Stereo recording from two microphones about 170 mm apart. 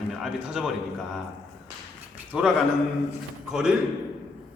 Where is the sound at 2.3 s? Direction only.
5° right (ahead or behind).